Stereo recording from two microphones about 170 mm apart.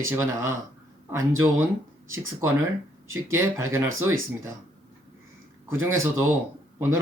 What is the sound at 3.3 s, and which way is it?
Speech, 15° right (ahead or behind).